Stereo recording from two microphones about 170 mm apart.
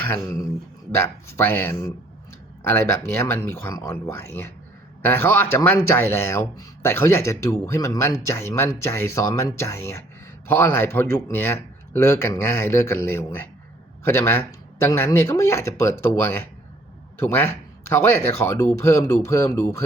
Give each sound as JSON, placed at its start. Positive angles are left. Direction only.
{"t": 0.0, "sound": "speech", "side_deg": 15}